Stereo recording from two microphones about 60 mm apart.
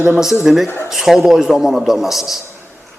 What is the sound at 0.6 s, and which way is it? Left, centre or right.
Speech, left.